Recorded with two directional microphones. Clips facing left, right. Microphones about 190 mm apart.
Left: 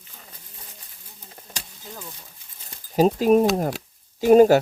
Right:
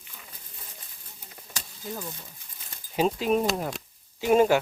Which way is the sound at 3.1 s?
45° left (ahead or behind).